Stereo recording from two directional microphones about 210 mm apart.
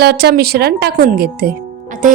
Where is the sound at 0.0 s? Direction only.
50° right (ahead or behind).